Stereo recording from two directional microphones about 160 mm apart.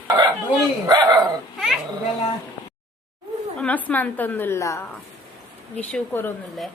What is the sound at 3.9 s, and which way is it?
Speech, 10° left (ahead or behind).